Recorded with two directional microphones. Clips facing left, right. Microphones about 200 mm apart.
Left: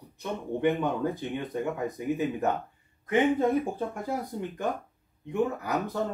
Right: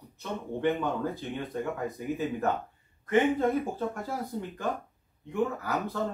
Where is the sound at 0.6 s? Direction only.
15° left (ahead or behind).